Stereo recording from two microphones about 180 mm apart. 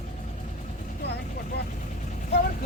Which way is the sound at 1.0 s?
70° left (ahead or behind).